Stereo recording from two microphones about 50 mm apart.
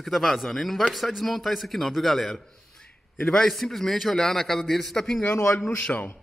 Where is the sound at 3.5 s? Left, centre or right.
Centre.